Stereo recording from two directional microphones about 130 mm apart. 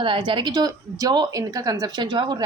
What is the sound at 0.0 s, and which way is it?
A woman's voice, 40° right (ahead or behind).